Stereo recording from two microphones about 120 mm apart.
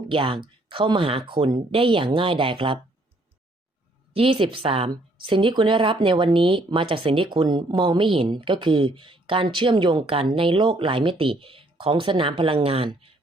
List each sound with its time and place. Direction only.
0.1 s speech: 45° right (ahead or behind)
4.1 s speech: 50° right (ahead or behind)